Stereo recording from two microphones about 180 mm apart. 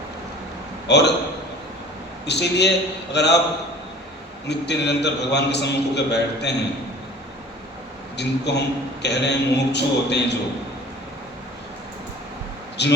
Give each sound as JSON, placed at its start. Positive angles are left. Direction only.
{"t": 0.9, "sound": "a man's voice", "side_deg": 70}
{"t": 2.2, "sound": "a man's voice", "side_deg": 70}
{"t": 4.4, "sound": "a man's voice", "side_deg": 70}
{"t": 8.1, "sound": "a man's voice", "side_deg": 70}
{"t": 12.8, "sound": "a man's voice", "side_deg": 70}